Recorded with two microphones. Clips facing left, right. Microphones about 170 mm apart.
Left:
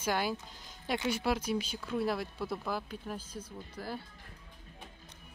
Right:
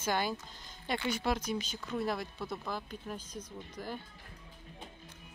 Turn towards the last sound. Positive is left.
turn(degrees=5)  # may be behind; listen again after turning